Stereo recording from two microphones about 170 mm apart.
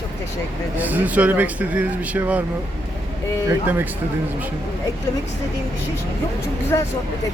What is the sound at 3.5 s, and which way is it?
Speech, 15° right (ahead or behind).